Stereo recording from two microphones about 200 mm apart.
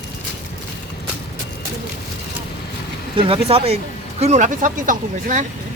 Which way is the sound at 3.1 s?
25° right (ahead or behind).